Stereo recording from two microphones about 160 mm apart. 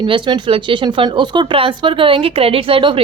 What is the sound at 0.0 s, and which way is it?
A woman's voice, 30° right (ahead or behind).